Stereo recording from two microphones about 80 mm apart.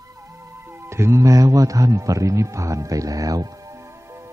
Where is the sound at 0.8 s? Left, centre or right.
Right.